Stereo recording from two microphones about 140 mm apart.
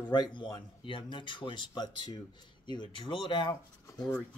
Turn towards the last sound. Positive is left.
turn(degrees=35)  # may be behind; listen again after turning